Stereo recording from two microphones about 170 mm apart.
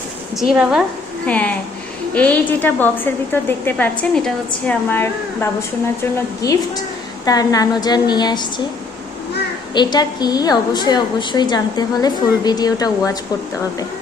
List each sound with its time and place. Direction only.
0.3 s a woman's voice: 5° right (ahead or behind)
1.3 s a woman's voice: 10° left (ahead or behind); by 8.6 s 25° left (ahead or behind)
9.7 s a woman's voice: 25° left (ahead or behind)